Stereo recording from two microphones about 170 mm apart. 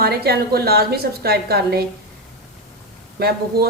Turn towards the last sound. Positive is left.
turn(degrees=-65)  # may be behind; listen again after turning